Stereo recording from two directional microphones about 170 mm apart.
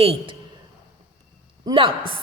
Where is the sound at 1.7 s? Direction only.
30° right (ahead or behind).